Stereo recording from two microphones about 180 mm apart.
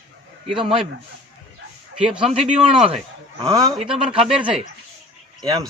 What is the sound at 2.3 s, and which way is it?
A man's voice, 35° right (ahead or behind).